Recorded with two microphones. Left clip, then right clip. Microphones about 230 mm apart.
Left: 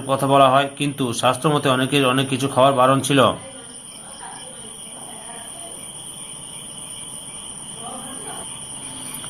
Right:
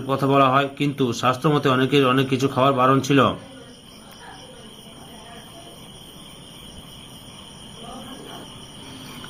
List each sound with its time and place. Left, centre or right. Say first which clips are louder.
0.1 s a man's voice: left 3 dB; centre